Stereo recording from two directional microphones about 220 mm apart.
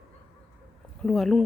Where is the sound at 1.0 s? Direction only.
Centre (ahead or behind).